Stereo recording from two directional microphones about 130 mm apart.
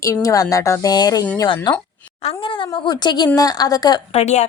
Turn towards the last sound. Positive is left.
turn(degrees=60)  # may be behind; listen again after turning